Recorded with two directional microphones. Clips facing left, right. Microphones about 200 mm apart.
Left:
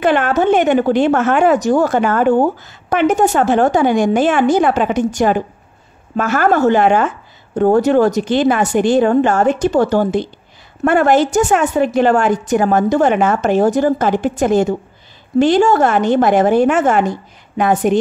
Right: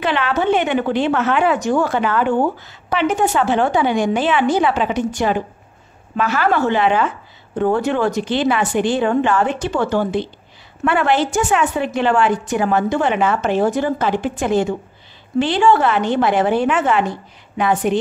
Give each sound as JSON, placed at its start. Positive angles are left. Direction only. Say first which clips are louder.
{"t": 0.0, "sound": "speech", "louder": "left 5 dB", "side_deg": 50}